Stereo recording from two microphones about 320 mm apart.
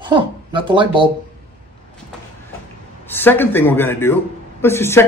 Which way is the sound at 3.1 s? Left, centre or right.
Centre.